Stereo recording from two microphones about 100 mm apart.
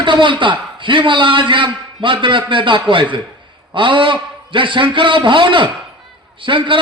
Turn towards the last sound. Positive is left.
turn(degrees=-55)  # may be behind; listen again after turning